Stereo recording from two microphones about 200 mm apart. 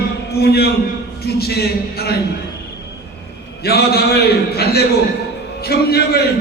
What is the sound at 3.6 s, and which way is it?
A man's voice, 50° left (ahead or behind).